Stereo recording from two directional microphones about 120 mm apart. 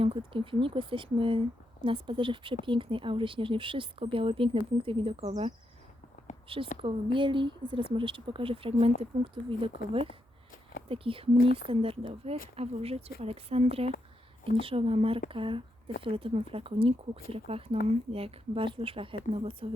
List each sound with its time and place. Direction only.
0.0 s speech: 45° right (ahead or behind)
6.5 s speech: 50° right (ahead or behind)